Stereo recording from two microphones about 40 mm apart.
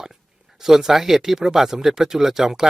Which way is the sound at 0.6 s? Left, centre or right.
Centre.